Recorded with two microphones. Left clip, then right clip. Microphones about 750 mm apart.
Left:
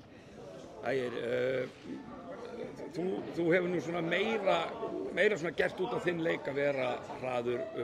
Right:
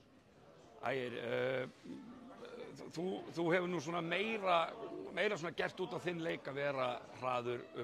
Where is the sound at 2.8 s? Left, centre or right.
Right.